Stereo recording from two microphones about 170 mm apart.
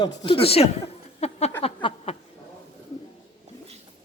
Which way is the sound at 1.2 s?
35° left (ahead or behind).